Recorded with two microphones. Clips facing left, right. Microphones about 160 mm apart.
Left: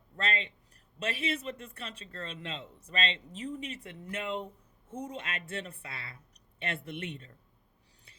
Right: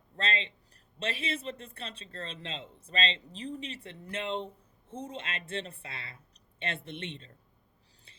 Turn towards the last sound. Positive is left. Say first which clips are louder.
# left 1 dB
turn(degrees=-25)  # may be behind; listen again after turning